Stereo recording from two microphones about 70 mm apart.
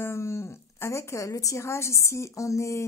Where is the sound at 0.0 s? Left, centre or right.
Left.